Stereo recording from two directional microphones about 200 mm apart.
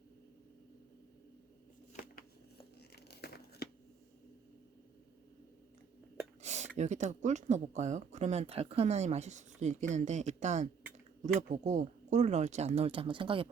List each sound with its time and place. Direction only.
2.9 s crumpling: 55° left (ahead or behind)
6.4 s dishes: 35° right (ahead or behind)
6.7 s speech: 35° right (ahead or behind)